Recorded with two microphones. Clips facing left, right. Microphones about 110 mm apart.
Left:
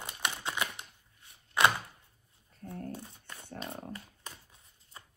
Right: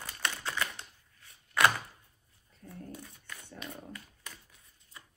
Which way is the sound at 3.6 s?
30° left (ahead or behind).